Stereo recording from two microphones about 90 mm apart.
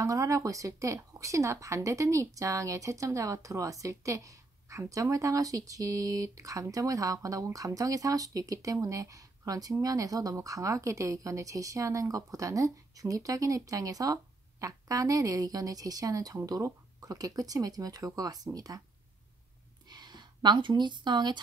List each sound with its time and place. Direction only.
0.0 s speech: 40° right (ahead or behind)
19.9 s speech: 50° right (ahead or behind)